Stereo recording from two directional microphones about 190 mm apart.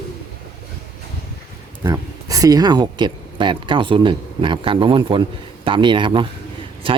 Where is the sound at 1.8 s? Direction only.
20° right (ahead or behind).